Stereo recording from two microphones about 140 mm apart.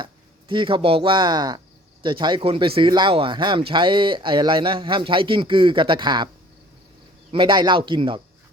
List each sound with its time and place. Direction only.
0.0 s speech: 35° right (ahead or behind)
7.3 s speech: 35° right (ahead or behind)